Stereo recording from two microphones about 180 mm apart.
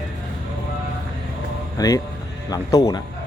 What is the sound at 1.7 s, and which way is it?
Speech, 20° left (ahead or behind).